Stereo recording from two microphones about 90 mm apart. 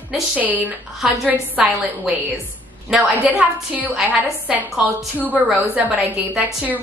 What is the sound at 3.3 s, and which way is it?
A woman's voice, 15° right (ahead or behind).